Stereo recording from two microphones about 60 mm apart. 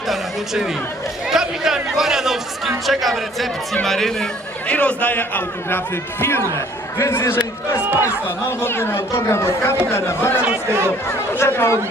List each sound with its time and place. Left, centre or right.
0.1 s a man's voice: centre
4.7 s a man's voice: left
8.4 s speech: left
10.7 s speech: right
11.1 s speech: left